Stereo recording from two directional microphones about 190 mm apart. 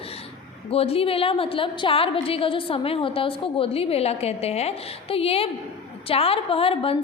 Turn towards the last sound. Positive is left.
turn(degrees=30)  # may be behind; listen again after turning